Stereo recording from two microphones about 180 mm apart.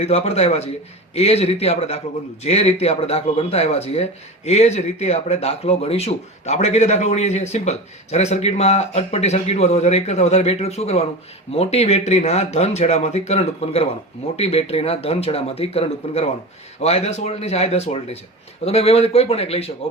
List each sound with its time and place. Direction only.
0.0 s a man's voice: 35° left (ahead or behind)